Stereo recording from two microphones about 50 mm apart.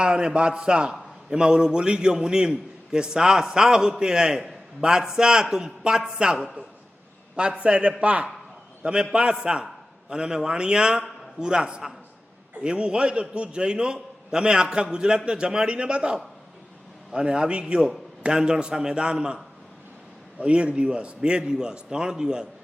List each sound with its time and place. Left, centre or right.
0.0 s a man's voice: centre
20.4 s a man's voice: right